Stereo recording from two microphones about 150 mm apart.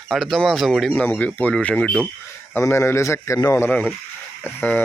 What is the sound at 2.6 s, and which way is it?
A man's voice, 15° left (ahead or behind).